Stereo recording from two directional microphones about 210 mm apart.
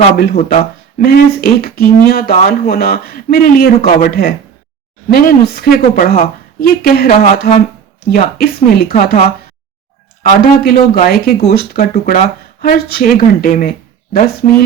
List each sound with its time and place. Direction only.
0.2 s a woman's voice: 40° left (ahead or behind)
10.2 s a woman's voice: 45° left (ahead or behind)